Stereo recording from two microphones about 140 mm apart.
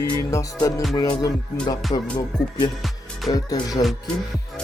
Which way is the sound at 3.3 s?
25° left (ahead or behind).